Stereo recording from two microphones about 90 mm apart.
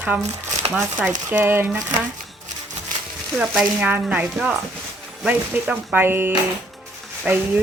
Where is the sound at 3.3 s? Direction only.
5° right (ahead or behind).